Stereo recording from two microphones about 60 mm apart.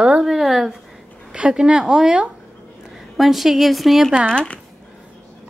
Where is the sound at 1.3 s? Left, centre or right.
Centre.